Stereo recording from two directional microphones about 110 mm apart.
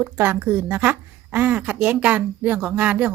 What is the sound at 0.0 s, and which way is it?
A woman's voice, 15° right (ahead or behind).